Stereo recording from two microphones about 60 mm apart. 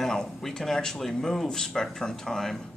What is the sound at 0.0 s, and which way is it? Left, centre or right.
Speech, centre.